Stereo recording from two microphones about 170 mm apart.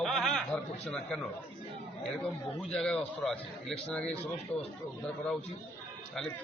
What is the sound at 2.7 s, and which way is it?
A man's voice, 5° left (ahead or behind).